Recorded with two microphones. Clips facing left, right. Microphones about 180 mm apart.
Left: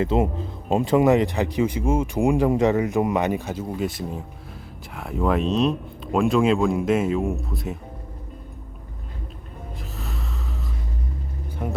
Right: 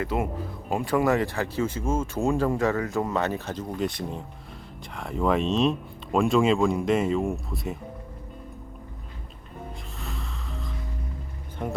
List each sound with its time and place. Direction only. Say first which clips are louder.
0.0 s speech: left 6 dB; 25° left (ahead or behind); by 7.8 s centre (ahead or behind)
10.0 s gasp: left 3 dB; 5° left (ahead or behind)
11.6 s music: left 1 dB; 5° left (ahead or behind)